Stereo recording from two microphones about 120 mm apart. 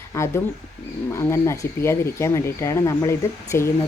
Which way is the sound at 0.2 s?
25° left (ahead or behind).